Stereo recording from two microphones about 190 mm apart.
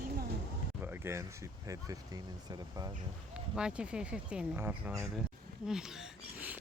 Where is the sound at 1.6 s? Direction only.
20° right (ahead or behind).